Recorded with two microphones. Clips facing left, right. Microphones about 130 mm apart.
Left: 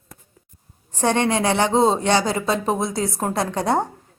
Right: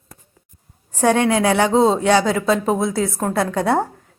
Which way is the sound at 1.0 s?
5° right (ahead or behind).